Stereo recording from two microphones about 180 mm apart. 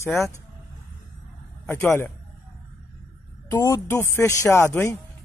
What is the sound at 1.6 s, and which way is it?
Speech, 15° left (ahead or behind).